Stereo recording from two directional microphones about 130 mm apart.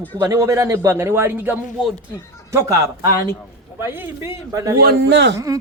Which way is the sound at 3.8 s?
15° right (ahead or behind).